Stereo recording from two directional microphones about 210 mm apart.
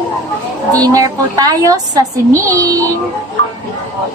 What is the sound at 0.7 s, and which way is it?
A woman's voice, 15° right (ahead or behind).